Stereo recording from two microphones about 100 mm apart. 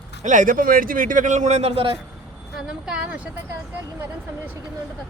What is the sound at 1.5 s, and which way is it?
Speech, 85° right.